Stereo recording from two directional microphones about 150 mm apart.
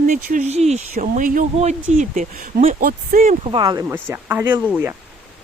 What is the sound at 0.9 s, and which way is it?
Speech, 65° right (ahead or behind).